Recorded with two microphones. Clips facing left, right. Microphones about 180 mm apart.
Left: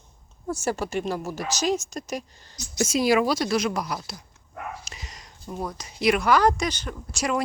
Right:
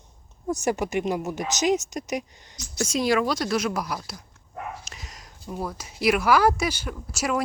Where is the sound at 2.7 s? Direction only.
5° left (ahead or behind).